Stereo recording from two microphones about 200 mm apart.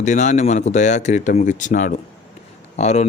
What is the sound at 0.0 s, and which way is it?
A man's voice, 35° left (ahead or behind).